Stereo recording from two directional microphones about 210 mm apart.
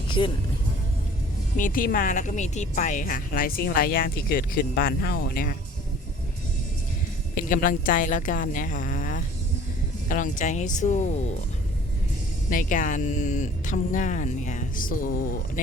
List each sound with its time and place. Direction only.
1.5 s speech: 40° left (ahead or behind)
7.3 s speech: 40° left (ahead or behind)
12.5 s speech: 40° left (ahead or behind)